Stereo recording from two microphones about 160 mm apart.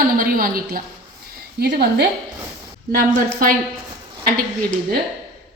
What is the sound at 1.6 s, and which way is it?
Speech, 85° right.